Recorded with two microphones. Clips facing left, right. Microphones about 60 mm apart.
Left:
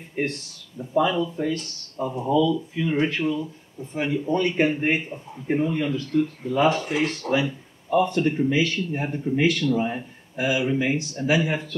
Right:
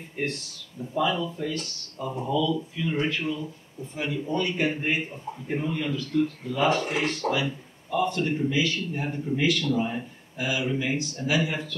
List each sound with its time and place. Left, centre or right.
0.2 s a man's voice: left
1.1 s speech: centre
1.4 s a man's voice: left
5.1 s a man's voice: centre
6.7 s speech: right
7.9 s speech: left